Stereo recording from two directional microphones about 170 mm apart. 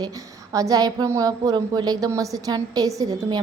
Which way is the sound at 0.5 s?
20° right (ahead or behind).